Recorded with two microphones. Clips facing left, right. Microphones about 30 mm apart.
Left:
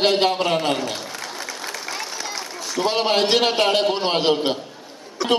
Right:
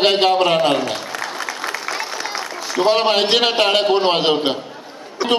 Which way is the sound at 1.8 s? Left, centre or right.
Right.